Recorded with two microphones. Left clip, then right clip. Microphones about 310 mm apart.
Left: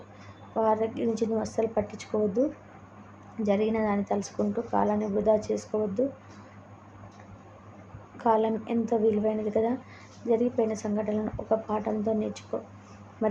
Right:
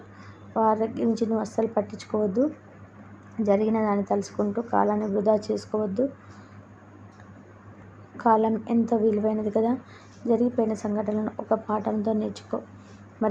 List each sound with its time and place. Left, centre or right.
0.5 s a woman's voice: centre
3.4 s a woman's voice: centre
8.2 s a woman's voice: centre